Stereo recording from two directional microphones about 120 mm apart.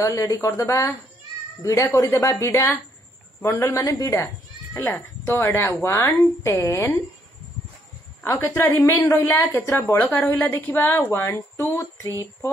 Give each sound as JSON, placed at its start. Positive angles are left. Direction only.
{"t": 0.0, "sound": "speech", "side_deg": 30}
{"t": 1.9, "sound": "speech", "side_deg": 15}
{"t": 4.7, "sound": "speech", "side_deg": 15}
{"t": 8.2, "sound": "speech", "side_deg": 20}